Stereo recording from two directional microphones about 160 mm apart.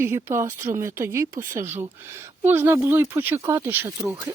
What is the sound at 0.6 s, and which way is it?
Speech, 15° right (ahead or behind).